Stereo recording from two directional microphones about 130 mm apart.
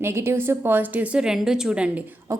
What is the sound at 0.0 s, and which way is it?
A woman's voice, 20° right (ahead or behind).